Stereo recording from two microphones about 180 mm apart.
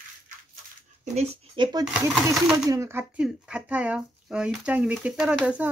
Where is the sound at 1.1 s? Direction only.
30° right (ahead or behind).